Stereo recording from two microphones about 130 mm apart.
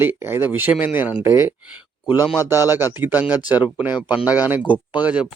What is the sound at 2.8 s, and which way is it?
Speech, 15° right (ahead or behind).